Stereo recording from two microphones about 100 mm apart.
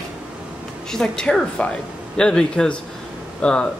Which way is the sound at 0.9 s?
5° left (ahead or behind).